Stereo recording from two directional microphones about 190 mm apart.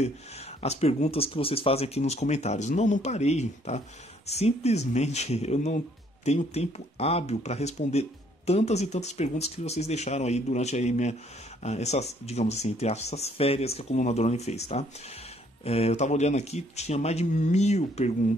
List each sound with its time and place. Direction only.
0.0 s speech: 35° left (ahead or behind)